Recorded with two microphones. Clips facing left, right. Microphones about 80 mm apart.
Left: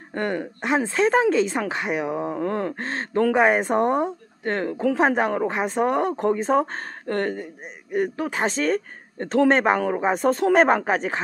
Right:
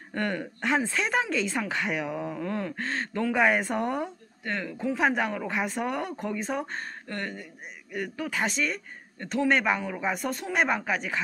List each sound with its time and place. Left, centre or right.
0.1 s a woman's voice: left
2.3 s a man's voice: left
4.5 s speech: left
4.9 s a woman's voice: left
7.1 s speech: left
7.9 s a man's voice: left